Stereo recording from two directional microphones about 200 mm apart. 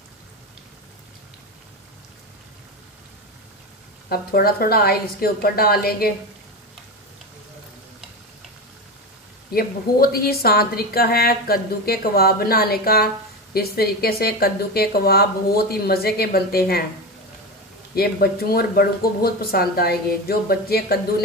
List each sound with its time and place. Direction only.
4.1 s a woman's voice: 50° left (ahead or behind)
9.5 s a woman's voice: 50° left (ahead or behind)
17.9 s a woman's voice: 50° left (ahead or behind)